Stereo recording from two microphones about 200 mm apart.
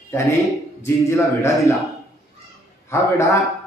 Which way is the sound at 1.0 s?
15° left (ahead or behind).